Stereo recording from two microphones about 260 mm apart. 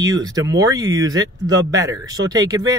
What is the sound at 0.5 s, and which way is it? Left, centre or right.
Speech, centre.